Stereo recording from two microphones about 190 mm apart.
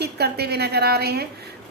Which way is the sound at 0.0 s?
55° right (ahead or behind).